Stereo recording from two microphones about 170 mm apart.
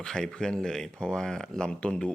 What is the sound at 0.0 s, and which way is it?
Speech, 5° left (ahead or behind).